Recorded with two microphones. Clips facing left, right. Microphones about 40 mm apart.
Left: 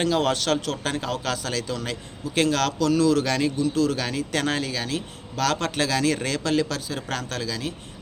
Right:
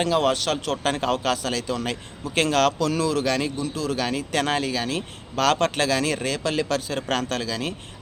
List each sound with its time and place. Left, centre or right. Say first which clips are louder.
0.0 s a man's voice: right 1 dB; centre
0.7 s a man's voice: right 4 dB; right
4.9 s a man's voice: right 2 dB; right
6.2 s a man's voice: left 1 dB; centre
6.7 s speech: right 4 dB; right